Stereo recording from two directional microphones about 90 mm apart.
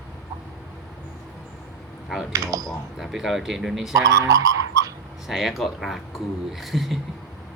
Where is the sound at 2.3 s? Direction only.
40° right (ahead or behind).